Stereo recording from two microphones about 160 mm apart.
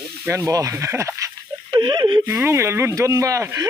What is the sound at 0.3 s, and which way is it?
Speech, 20° right (ahead or behind).